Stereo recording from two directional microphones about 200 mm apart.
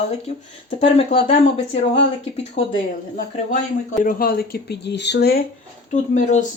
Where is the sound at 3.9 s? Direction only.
45° left (ahead or behind).